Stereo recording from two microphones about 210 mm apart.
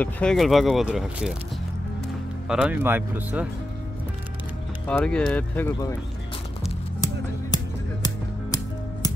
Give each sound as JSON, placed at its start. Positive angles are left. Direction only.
{"t": 0.0, "sound": "speech", "side_deg": 5}
{"t": 2.4, "sound": "speech", "side_deg": -5}
{"t": 4.8, "sound": "speech", "side_deg": 5}
{"t": 7.5, "sound": "music", "side_deg": 20}